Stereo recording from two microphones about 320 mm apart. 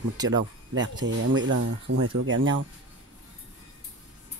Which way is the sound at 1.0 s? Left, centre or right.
Right.